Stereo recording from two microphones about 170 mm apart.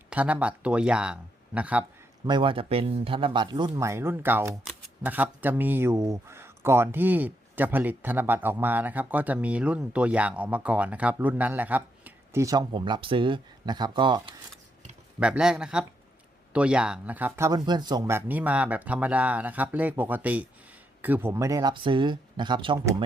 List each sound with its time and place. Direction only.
0.1 s speech: 10° right (ahead or behind)
2.2 s speech: 30° right (ahead or behind)
15.2 s speech: 5° right (ahead or behind); by 18.2 s 20° right (ahead or behind)
18.3 s speech: 10° right (ahead or behind); by 22.8 s 30° right (ahead or behind)